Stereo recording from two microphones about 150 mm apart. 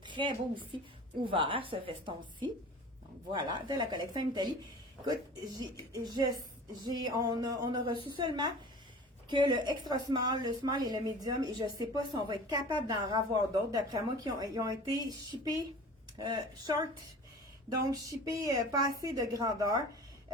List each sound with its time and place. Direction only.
0.0 s a woman's voice: 30° right (ahead or behind)
17.9 s a woman's voice: 20° right (ahead or behind)